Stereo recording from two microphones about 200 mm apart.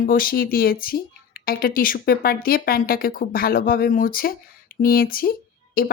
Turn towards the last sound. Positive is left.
turn(degrees=45)  # may be behind; listen again after turning